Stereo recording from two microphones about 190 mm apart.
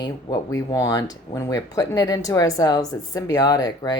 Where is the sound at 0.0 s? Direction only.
20° left (ahead or behind).